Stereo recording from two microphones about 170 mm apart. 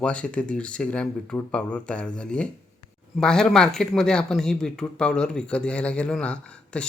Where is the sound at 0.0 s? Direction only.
5° left (ahead or behind).